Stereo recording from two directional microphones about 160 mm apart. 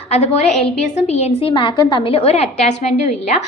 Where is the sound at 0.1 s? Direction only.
45° left (ahead or behind).